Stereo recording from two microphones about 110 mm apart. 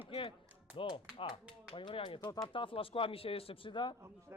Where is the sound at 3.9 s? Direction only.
25° right (ahead or behind).